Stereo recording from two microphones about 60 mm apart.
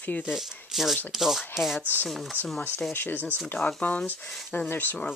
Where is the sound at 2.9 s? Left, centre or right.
Left.